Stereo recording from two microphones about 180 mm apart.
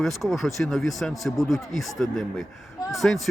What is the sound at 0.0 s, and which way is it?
Speech, centre (ahead or behind).